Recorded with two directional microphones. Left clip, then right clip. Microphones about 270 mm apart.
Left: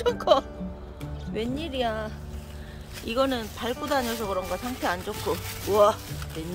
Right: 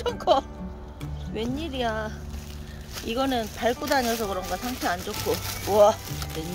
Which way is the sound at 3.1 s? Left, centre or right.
Centre.